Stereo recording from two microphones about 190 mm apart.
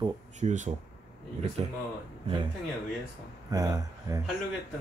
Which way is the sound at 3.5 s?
20° right (ahead or behind).